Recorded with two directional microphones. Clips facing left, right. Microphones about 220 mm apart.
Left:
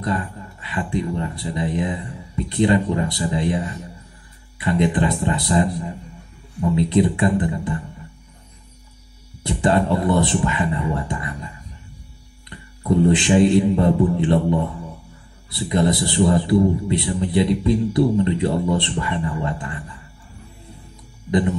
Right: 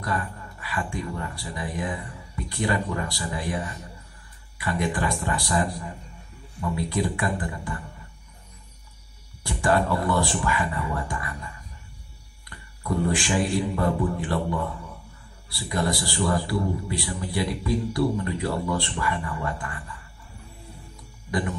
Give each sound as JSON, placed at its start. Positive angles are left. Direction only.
{"t": 0.0, "sound": "a man's voice", "side_deg": 20}
{"t": 9.4, "sound": "a man's voice", "side_deg": 20}
{"t": 21.3, "sound": "speech", "side_deg": 20}